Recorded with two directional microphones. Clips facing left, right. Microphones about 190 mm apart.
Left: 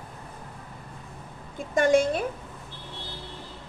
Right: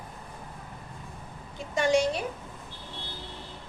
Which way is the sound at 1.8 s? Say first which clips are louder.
Left 3 dB; 50° left (ahead or behind).